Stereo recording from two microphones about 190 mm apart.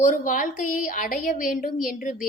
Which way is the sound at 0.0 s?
45° left (ahead or behind).